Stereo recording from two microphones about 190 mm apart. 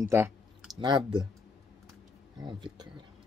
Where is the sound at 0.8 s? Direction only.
25° right (ahead or behind).